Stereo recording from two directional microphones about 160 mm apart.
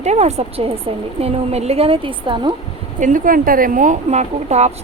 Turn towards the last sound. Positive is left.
turn(degrees=-45)  # may be behind; listen again after turning